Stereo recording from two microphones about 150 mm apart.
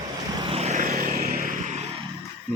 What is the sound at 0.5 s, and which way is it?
Vehicle, 50° right (ahead or behind).